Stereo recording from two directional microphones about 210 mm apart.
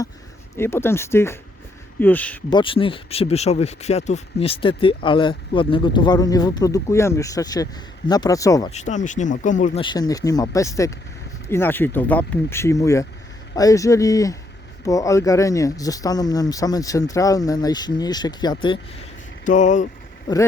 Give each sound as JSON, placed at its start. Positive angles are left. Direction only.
{"t": 0.5, "sound": "speech", "side_deg": 10}
{"t": 2.5, "sound": "speech", "side_deg": 25}
{"t": 8.7, "sound": "speech", "side_deg": 35}
{"t": 9.8, "sound": "speech", "side_deg": 20}
{"t": 19.5, "sound": "speech", "side_deg": 35}
{"t": 20.3, "sound": "speech", "side_deg": 20}